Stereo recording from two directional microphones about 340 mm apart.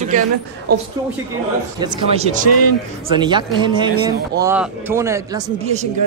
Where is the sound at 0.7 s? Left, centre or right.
Right.